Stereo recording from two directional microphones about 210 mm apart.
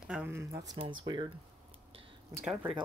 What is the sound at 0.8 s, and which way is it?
Speech, 25° right (ahead or behind).